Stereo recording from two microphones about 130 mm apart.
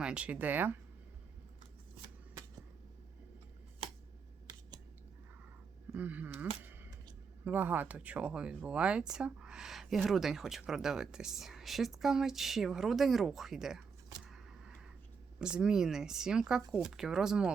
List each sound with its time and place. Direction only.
0.0 s speech: 10° right (ahead or behind)
2.0 s shuffling cards: 35° right (ahead or behind)
5.9 s speech: 15° right (ahead or behind)
6.6 s a sound: 15° right (ahead or behind)
7.4 s speech: 15° right (ahead or behind)
14.2 s a sound: centre (ahead or behind)
15.4 s speech: 5° right (ahead or behind)